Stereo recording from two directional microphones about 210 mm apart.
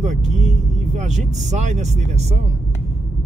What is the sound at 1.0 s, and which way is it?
Speech, 35° right (ahead or behind).